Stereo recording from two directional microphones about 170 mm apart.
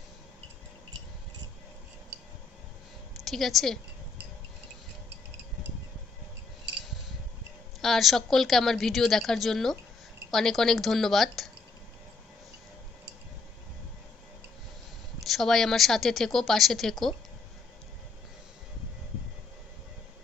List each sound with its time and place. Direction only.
3.3 s a woman's voice: centre (ahead or behind)
7.8 s a woman's voice: centre (ahead or behind)
15.2 s a woman's voice: centre (ahead or behind)